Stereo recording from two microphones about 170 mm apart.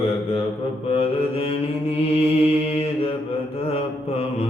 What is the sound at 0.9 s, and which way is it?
Mantra, 35° left (ahead or behind).